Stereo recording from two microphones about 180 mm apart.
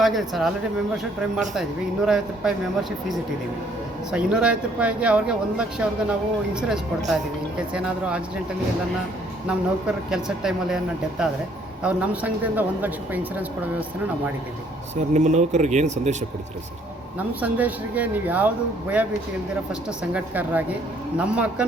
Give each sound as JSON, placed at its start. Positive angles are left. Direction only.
{"t": 0.0, "sound": "speech", "side_deg": 0}
{"t": 1.5, "sound": "speech", "side_deg": -5}
{"t": 4.1, "sound": "speech", "side_deg": -5}
{"t": 9.5, "sound": "speech", "side_deg": -5}
{"t": 15.1, "sound": "speech", "side_deg": -40}
{"t": 17.2, "sound": "speech", "side_deg": -10}
{"t": 20.1, "sound": "speech", "side_deg": -10}